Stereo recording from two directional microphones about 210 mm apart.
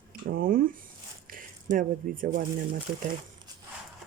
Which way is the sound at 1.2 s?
40° right (ahead or behind).